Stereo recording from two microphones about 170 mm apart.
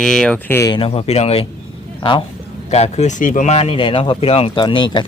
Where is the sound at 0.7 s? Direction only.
35° left (ahead or behind).